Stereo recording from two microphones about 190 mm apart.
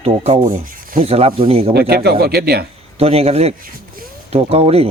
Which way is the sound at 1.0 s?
30° right (ahead or behind).